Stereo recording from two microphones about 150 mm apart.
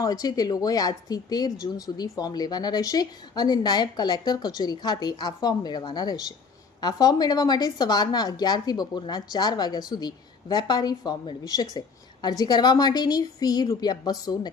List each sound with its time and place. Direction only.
0.0 s speech: 25° left (ahead or behind)